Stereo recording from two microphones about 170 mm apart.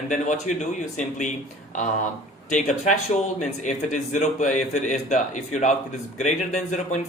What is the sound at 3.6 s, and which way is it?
A man's voice, 45° left (ahead or behind).